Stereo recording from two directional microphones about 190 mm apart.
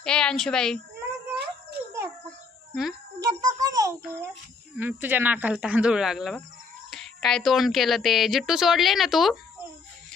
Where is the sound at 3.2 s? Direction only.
20° right (ahead or behind).